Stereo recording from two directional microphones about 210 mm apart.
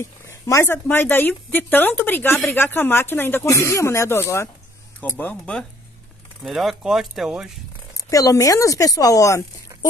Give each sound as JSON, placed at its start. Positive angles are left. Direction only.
{"t": 0.0, "sound": "speech", "side_deg": 15}
{"t": 7.9, "sound": "speech", "side_deg": 15}